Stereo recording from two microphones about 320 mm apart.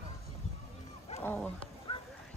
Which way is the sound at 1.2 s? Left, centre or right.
Centre.